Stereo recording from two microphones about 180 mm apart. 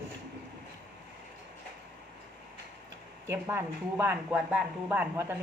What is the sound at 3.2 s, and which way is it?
Speech, 15° right (ahead or behind).